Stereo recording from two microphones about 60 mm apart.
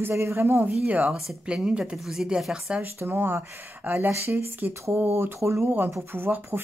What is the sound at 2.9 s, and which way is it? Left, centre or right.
Speech, right.